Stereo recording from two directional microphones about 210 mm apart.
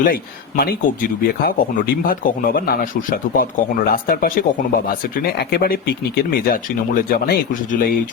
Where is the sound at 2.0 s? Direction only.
40° left (ahead or behind).